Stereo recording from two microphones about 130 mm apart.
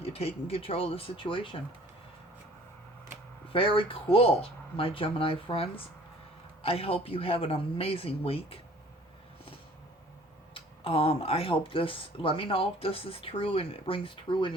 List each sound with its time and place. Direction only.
0.0 s speech: 50° left (ahead or behind)
3.5 s speech: 45° left (ahead or behind)
10.5 s speech: 45° left (ahead or behind)